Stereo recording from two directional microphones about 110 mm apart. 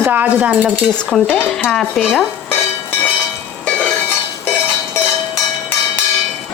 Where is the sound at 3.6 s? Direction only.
10° left (ahead or behind).